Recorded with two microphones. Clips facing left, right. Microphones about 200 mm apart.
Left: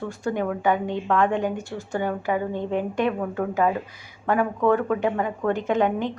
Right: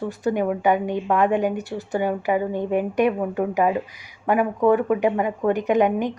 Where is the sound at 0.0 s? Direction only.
15° right (ahead or behind).